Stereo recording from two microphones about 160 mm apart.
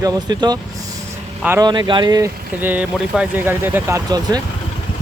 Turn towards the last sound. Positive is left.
turn(degrees=-25)  # may be behind; listen again after turning